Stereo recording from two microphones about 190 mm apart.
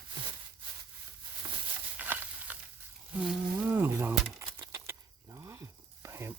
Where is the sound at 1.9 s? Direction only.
10° right (ahead or behind).